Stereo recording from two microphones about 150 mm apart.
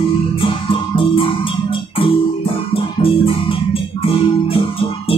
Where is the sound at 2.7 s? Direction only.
40° left (ahead or behind).